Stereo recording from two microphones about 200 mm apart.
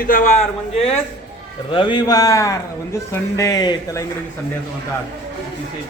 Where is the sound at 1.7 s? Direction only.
25° left (ahead or behind).